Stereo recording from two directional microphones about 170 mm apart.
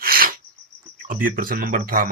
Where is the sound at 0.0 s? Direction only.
60° right (ahead or behind).